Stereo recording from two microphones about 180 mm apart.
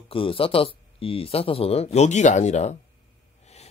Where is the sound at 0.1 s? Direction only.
30° left (ahead or behind).